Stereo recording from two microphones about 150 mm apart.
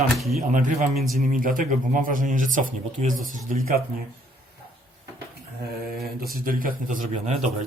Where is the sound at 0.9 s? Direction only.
Centre (ahead or behind).